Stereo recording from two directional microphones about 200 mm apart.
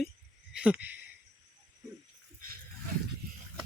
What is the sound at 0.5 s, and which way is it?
Speech, 5° right (ahead or behind).